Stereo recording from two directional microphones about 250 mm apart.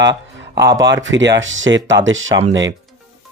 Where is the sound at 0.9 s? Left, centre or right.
Right.